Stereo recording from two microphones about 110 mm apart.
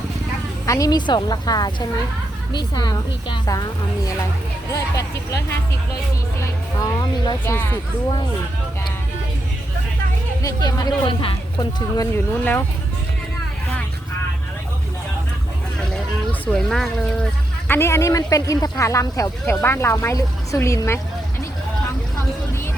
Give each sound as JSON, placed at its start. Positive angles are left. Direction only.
{"t": 0.6, "sound": "a woman's voice", "side_deg": 30}
{"t": 6.8, "sound": "a woman's voice", "side_deg": 40}
{"t": 7.4, "sound": "speech", "side_deg": 20}
{"t": 10.4, "sound": "a woman's voice", "side_deg": 35}
{"t": 12.1, "sound": "speech", "side_deg": 20}
{"t": 16.5, "sound": "speech", "side_deg": 5}
{"t": 17.7, "sound": "speech", "side_deg": 25}